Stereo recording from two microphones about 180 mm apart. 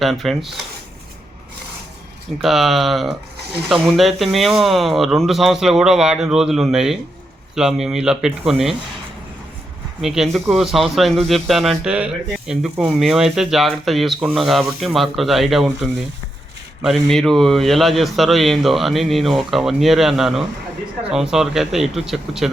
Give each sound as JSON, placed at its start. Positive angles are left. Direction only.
{"t": 0.0, "sound": "speech", "side_deg": 0}
{"t": 2.4, "sound": "speech", "side_deg": 0}
{"t": 10.0, "sound": "speech", "side_deg": 0}